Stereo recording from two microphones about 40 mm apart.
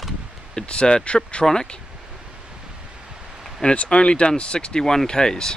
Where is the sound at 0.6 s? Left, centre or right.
Left.